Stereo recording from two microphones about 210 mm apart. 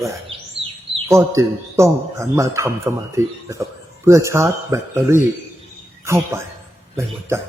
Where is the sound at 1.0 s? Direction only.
15° right (ahead or behind).